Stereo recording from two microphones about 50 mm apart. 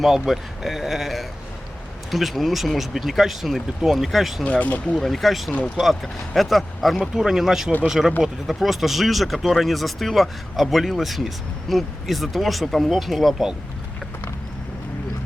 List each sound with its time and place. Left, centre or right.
0.0 s speech: centre
4.4 s speech: left
4.9 s speech: centre
5.5 s speech: left
5.7 s speech: centre